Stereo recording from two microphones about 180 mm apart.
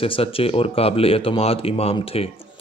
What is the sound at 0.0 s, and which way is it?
Speech, 30° left (ahead or behind).